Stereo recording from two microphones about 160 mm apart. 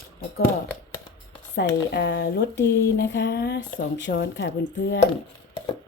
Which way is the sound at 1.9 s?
90° left.